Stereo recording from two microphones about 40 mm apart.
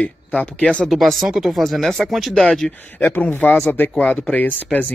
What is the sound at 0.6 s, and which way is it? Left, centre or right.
Speech, left.